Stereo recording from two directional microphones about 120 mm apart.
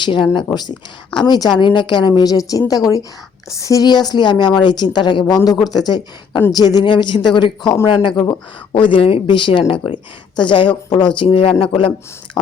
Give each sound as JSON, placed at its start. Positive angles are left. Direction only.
{"t": 0.0, "sound": "a woman's voice", "side_deg": 40}
{"t": 5.3, "sound": "a woman's voice", "side_deg": 30}